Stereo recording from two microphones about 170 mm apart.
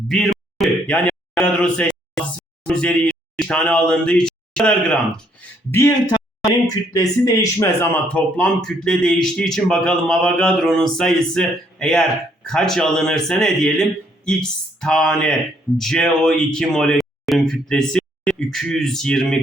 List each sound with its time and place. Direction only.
0.1 s a sound: centre (ahead or behind)
2.6 s speech: 5° left (ahead or behind)
5.7 s speech: 15° left (ahead or behind)
8.0 s speech: 5° left (ahead or behind)